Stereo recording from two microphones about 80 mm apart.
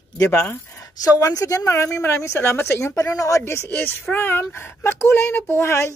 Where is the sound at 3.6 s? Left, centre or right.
Left.